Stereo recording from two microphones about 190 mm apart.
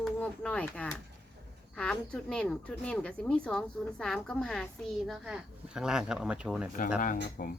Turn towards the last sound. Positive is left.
turn(degrees=45)  # may be behind; listen again after turning